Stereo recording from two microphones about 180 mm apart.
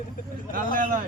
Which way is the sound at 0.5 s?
50° right (ahead or behind).